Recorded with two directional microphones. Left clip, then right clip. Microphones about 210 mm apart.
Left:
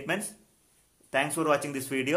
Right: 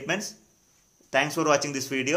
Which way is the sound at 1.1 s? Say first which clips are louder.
Right 3 dB; 10° right (ahead or behind).